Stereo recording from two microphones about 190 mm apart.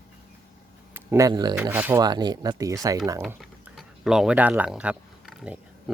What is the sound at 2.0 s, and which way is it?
Speech, 20° right (ahead or behind).